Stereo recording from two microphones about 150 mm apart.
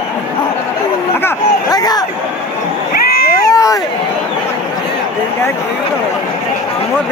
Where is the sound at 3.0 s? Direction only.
90° left.